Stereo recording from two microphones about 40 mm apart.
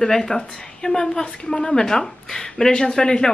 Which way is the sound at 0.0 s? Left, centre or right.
Centre.